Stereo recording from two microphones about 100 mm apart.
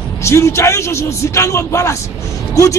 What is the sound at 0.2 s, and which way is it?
A man's voice, 30° left (ahead or behind).